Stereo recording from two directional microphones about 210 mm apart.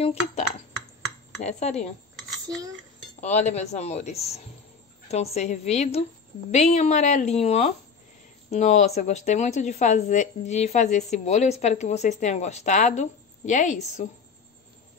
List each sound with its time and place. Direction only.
0.0 s a woman's voice: 30° left (ahead or behind)
3.2 s a woman's voice: 35° left (ahead or behind)